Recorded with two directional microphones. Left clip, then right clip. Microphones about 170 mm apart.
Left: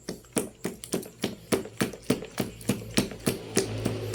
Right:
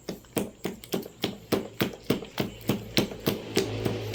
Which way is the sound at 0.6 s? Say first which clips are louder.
Even; 15° left (ahead or behind).